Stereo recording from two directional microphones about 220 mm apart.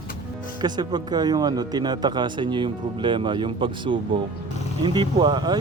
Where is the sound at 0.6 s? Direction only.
20° right (ahead or behind).